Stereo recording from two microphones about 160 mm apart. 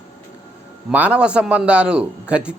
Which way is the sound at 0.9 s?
5° right (ahead or behind).